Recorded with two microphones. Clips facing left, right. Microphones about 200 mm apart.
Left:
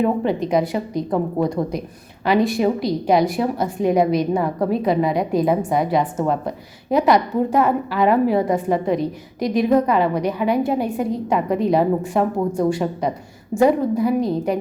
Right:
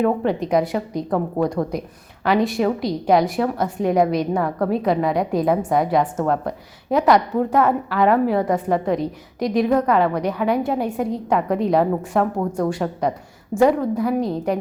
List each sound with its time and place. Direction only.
0.0 s a woman's voice: 5° left (ahead or behind)
1.1 s a woman's voice: 15° left (ahead or behind)
2.2 s a woman's voice: centre (ahead or behind)